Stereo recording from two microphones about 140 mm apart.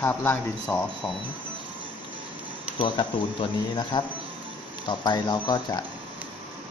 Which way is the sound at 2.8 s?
35° left (ahead or behind).